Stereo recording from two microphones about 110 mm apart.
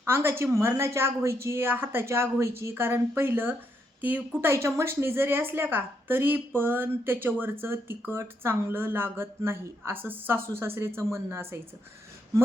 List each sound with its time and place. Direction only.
0.0 s a woman's voice: 25° right (ahead or behind)